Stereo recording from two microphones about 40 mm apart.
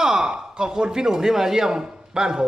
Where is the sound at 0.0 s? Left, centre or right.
Centre.